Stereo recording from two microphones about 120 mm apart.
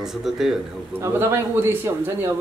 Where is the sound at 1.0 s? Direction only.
20° right (ahead or behind).